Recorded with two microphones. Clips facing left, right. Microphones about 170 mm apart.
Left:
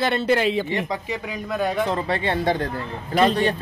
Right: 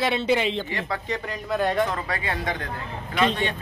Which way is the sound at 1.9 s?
30° left (ahead or behind).